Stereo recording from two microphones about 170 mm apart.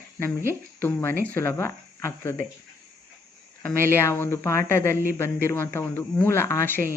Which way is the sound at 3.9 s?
15° left (ahead or behind).